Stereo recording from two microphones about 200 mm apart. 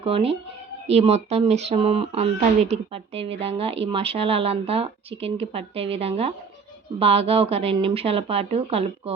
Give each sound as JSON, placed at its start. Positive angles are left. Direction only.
{"t": 0.0, "sound": "speech", "side_deg": -30}